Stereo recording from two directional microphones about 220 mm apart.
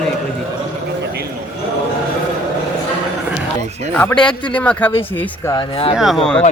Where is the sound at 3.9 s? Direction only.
5° left (ahead or behind).